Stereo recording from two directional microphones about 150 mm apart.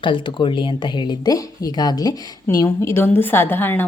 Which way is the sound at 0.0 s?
35° left (ahead or behind).